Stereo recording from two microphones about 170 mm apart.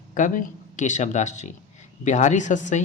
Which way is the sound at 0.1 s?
50° left (ahead or behind).